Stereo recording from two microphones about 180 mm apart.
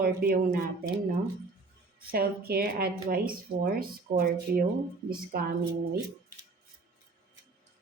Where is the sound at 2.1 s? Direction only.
55° right (ahead or behind).